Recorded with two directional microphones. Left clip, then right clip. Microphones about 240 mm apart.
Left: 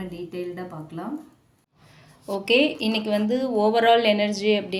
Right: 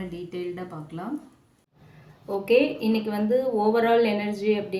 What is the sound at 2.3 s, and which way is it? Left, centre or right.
Speech, left.